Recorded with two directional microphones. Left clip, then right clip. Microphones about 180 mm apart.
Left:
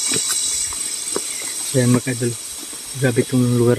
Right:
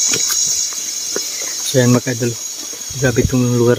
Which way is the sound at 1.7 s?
25° right (ahead or behind).